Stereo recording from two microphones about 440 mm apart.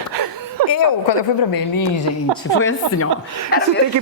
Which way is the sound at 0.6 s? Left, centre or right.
Right.